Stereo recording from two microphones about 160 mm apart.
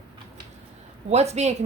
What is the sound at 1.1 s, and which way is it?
Speech, 40° right (ahead or behind).